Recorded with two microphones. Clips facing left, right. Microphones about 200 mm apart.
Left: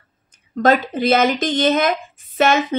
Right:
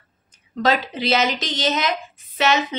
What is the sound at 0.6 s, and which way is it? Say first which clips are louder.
Speech: left 5 dB; 50° left (ahead or behind).